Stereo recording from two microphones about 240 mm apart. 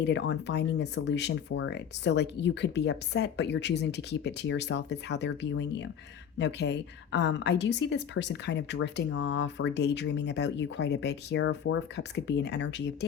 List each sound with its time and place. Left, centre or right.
0.0 s a woman's voice: left